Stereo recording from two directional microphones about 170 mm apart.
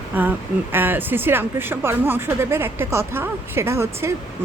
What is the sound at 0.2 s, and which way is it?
Speech, 10° right (ahead or behind).